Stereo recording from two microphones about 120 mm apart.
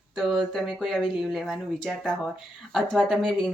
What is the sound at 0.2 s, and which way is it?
Speech, centre (ahead or behind).